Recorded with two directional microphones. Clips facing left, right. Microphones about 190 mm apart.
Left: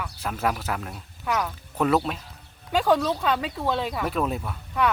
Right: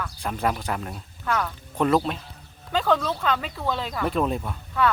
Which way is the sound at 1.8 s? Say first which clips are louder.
Right 1 dB; 5° left (ahead or behind).